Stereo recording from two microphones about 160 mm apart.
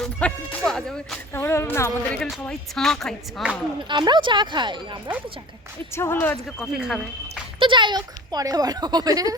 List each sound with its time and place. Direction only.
0.0 s music: 5° left (ahead or behind)
1.3 s a woman's voice: 15° left (ahead or behind); by 3.6 s 5° right (ahead or behind)
3.8 s speech: 30° right (ahead or behind)
5.9 s speech: 15° left (ahead or behind)
6.6 s a woman's voice: 5° right (ahead or behind)
7.6 s speech: 30° right (ahead or behind)